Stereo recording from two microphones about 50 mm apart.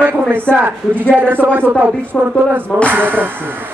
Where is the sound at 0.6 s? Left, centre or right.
Right.